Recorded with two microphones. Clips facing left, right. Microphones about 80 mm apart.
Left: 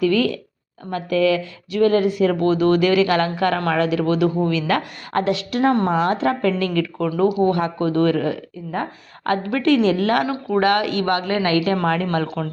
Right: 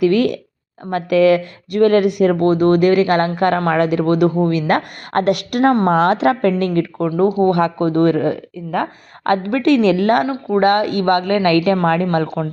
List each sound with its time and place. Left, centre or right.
0.0 s a woman's voice: right
6.1 s a woman's voice: right
6.4 s speech: right
7.9 s a woman's voice: right
10.6 s speech: right